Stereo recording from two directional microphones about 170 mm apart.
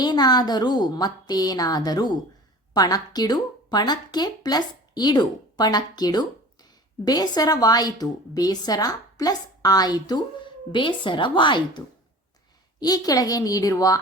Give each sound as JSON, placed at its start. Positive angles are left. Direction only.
{"t": 0.0, "sound": "a woman's voice", "side_deg": 25}
{"t": 12.8, "sound": "a woman's voice", "side_deg": 20}